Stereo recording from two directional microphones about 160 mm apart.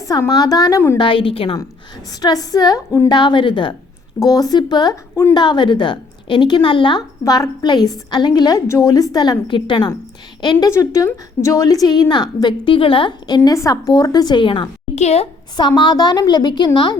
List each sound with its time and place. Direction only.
0.0 s a woman's voice: 20° left (ahead or behind)
0.9 s a woman's voice: 30° left (ahead or behind)
2.2 s a woman's voice: 25° left (ahead or behind)
14.9 s a woman's voice: 40° left (ahead or behind)
15.5 s a woman's voice: 30° left (ahead or behind)